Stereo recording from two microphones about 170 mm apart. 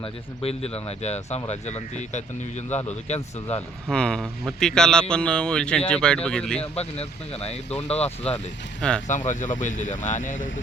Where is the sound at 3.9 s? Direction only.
5° left (ahead or behind).